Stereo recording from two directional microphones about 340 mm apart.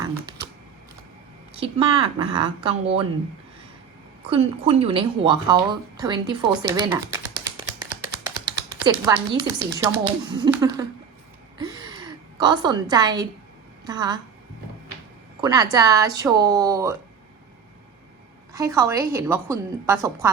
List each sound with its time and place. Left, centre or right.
1.5 s speech: centre
4.3 s speech: centre
6.6 s a sound: centre
8.1 s speech: centre
11.5 s a sound: centre
13.8 s speech: centre
15.4 s speech: centre
18.5 s speech: centre